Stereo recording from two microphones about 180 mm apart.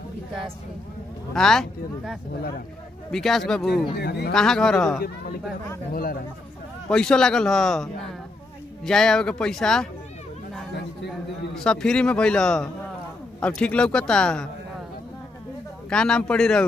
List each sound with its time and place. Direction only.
1.3 s a man's voice: 5° left (ahead or behind)
4.0 s speech: 65° left (ahead or behind)
4.3 s a man's voice: 5° left (ahead or behind)
6.9 s a man's voice: 5° left (ahead or behind)
11.5 s a man's voice: 5° left (ahead or behind)
15.9 s a man's voice: 5° left (ahead or behind)